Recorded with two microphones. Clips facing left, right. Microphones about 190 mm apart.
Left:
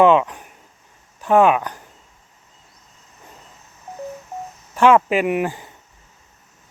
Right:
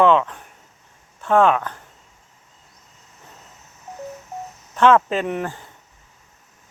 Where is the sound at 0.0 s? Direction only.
15° left (ahead or behind).